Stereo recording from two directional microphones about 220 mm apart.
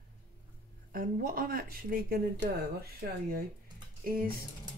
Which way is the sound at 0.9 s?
40° right (ahead or behind).